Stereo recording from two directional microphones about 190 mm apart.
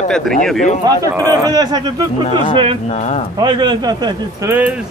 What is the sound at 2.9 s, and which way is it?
Speech, 35° left (ahead or behind).